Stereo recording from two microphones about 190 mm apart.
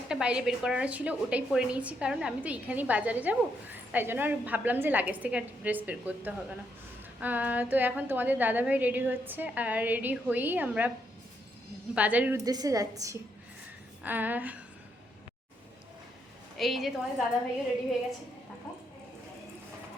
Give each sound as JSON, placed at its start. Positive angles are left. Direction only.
{"t": 0.1, "sound": "a woman's voice", "side_deg": -5}
{"t": 11.9, "sound": "a woman's voice", "side_deg": -5}
{"t": 12.5, "sound": "a woman's voice", "side_deg": -20}
{"t": 16.6, "sound": "a woman's voice", "side_deg": 0}